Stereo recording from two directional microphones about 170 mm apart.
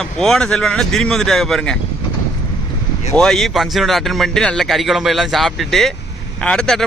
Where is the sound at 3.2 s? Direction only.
Centre (ahead or behind).